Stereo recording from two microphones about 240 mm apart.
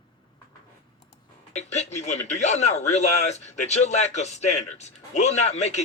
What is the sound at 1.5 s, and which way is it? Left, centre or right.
A man's voice, left.